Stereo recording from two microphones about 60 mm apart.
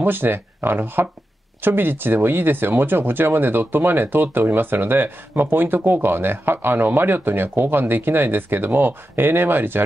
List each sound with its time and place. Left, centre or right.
0.0 s speech: right